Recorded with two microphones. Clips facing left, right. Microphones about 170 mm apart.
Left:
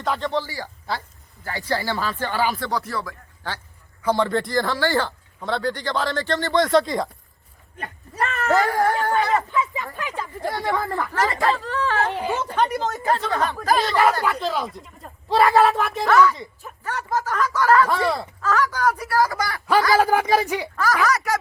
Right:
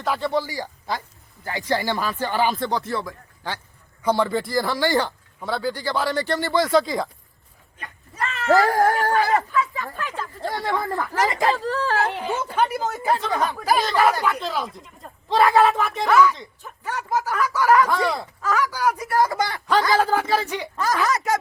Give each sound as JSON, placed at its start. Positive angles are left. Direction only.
{"t": 0.0, "sound": "speech", "side_deg": -10}
{"t": 8.5, "sound": "speech", "side_deg": -40}
{"t": 9.5, "sound": "speech", "side_deg": 20}
{"t": 10.7, "sound": "speech", "side_deg": 0}
{"t": 11.0, "sound": "speech", "side_deg": -15}
{"t": 11.5, "sound": "speech", "side_deg": -35}
{"t": 12.1, "sound": "speech", "side_deg": 15}
{"t": 12.5, "sound": "speech", "side_deg": -5}
{"t": 16.8, "sound": "speech", "side_deg": -15}
{"t": 17.9, "sound": "speech", "side_deg": 0}
{"t": 18.4, "sound": "speech", "side_deg": -10}
{"t": 19.9, "sound": "speech", "side_deg": 10}
{"t": 20.7, "sound": "speech", "side_deg": -20}